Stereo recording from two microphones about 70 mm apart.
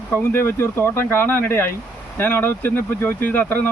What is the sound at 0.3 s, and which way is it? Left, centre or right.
Speech, left.